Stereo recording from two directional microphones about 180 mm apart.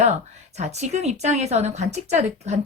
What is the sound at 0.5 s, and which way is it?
A woman's voice, 40° right (ahead or behind).